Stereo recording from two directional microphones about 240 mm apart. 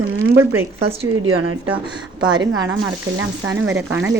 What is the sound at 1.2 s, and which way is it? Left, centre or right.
A woman's voice, right.